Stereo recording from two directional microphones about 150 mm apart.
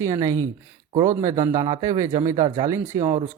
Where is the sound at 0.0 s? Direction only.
25° right (ahead or behind).